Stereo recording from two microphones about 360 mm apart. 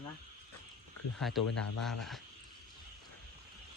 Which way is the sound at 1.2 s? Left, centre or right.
Centre.